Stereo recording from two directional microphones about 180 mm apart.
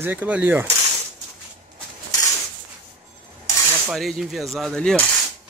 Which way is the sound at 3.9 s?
Centre (ahead or behind).